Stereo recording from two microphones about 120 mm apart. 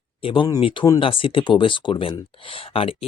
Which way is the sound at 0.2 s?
50° left (ahead or behind).